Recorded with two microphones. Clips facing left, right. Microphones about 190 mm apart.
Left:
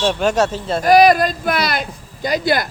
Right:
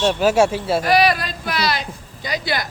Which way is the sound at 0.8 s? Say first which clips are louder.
Left 8 dB; 45° left (ahead or behind).